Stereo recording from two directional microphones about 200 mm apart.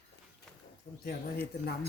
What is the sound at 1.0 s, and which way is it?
Speech, 55° left (ahead or behind).